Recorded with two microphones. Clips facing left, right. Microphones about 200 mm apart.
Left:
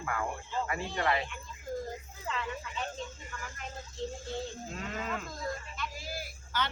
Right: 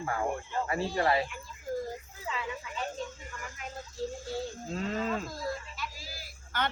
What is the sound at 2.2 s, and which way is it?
Speech, 5° right (ahead or behind).